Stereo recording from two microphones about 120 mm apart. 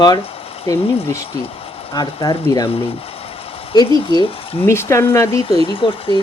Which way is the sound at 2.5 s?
50° left (ahead or behind).